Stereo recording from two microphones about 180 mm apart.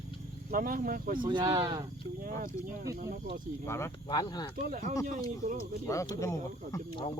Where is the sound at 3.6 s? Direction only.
15° left (ahead or behind).